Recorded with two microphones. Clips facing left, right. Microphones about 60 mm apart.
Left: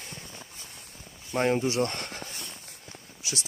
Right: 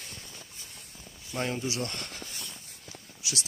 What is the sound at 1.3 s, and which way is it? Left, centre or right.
Speech, left.